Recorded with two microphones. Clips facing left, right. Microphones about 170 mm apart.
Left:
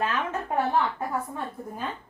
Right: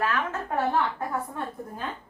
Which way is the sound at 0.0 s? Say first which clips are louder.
Even; 20° left (ahead or behind).